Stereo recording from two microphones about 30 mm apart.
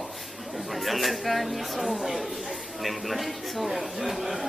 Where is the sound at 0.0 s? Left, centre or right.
Centre.